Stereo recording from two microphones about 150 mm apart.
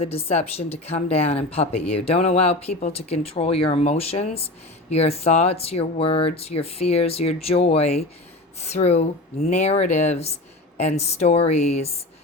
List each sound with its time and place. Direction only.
0.0 s speech: 40° left (ahead or behind)